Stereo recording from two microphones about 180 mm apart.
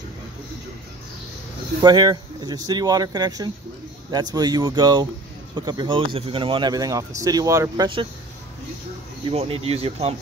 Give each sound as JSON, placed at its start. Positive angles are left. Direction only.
{"t": 1.8, "sound": "speech", "side_deg": -25}
{"t": 9.3, "sound": "speech", "side_deg": -35}